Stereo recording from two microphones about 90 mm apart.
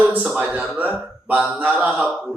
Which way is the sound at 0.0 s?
15° right (ahead or behind).